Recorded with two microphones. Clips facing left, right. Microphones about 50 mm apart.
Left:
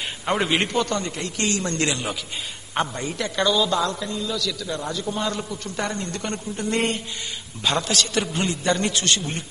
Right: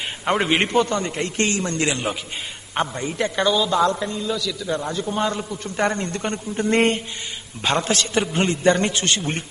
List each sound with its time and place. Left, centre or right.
0.3 s a man's voice: centre
2.7 s a man's voice: centre
3.5 s a woman's voice: centre
3.9 s a man's voice: right